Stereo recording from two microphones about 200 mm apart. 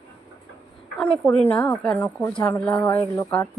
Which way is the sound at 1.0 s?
5° left (ahead or behind).